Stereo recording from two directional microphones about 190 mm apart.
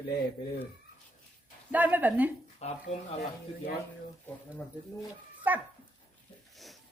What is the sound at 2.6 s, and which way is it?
Speech, 35° left (ahead or behind).